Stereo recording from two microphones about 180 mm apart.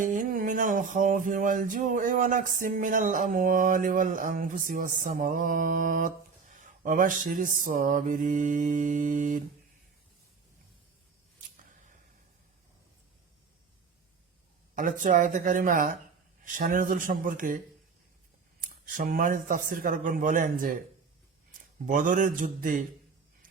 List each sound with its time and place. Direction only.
0.0 s music: 50° right (ahead or behind)
14.8 s music: 45° right (ahead or behind)
18.6 s music: 45° right (ahead or behind)
21.8 s music: 45° right (ahead or behind)